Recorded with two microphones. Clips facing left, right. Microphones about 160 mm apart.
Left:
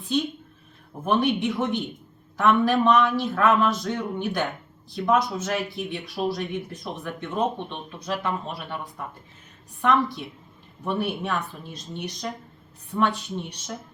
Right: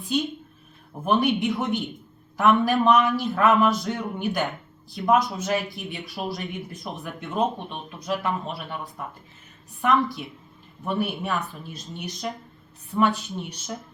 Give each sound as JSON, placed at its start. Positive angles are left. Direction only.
{"t": 0.0, "sound": "a man's voice", "side_deg": -10}